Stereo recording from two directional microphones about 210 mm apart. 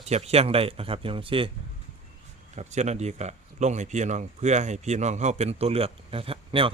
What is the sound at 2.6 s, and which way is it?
A man's voice, 35° right (ahead or behind).